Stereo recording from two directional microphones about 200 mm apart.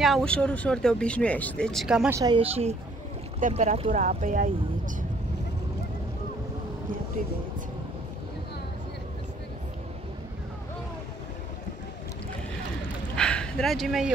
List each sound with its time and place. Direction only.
0.0 s speech: centre (ahead or behind)
2.1 s speech: 20° right (ahead or behind); by 4.9 s 40° right (ahead or behind)
13.1 s dog: 5° left (ahead or behind)